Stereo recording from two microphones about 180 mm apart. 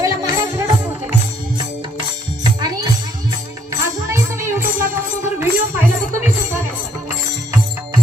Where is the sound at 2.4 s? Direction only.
20° right (ahead or behind).